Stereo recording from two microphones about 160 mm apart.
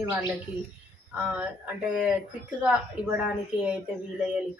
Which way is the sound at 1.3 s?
10° right (ahead or behind).